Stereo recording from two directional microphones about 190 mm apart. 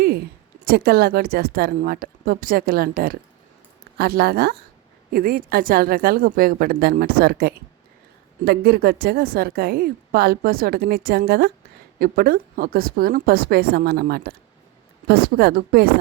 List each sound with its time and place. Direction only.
0.6 s a woman's voice: 55° right (ahead or behind)